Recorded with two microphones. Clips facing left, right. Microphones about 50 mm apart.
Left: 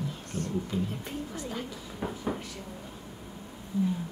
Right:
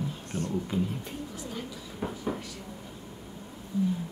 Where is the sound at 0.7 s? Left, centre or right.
Centre.